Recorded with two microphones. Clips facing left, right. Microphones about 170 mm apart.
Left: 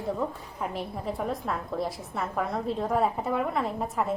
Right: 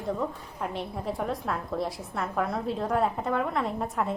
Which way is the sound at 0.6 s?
Centre (ahead or behind).